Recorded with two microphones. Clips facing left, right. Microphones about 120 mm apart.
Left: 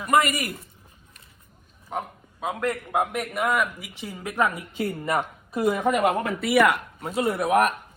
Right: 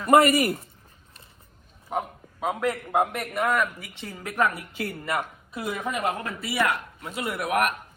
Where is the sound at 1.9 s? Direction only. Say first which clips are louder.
Right 2 dB; 5° right (ahead or behind); by 5.2 s 25° left (ahead or behind).